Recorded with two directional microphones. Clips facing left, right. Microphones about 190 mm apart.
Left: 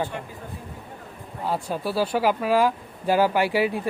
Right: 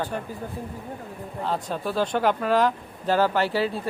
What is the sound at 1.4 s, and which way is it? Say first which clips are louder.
Speech: left 1 dB; 10° left (ahead or behind).